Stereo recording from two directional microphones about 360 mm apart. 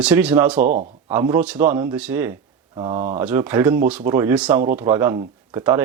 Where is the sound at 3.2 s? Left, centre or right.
Centre.